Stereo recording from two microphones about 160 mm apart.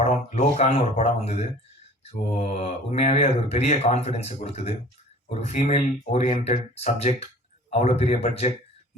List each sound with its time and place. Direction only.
0.0 s speech: 45° left (ahead or behind)